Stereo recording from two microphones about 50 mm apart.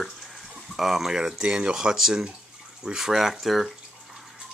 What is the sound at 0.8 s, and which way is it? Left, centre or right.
Speech, centre.